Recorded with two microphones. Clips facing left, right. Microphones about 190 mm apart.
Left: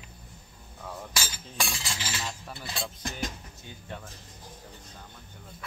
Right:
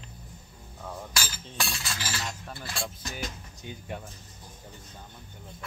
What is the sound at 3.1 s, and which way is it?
Speech, 15° right (ahead or behind).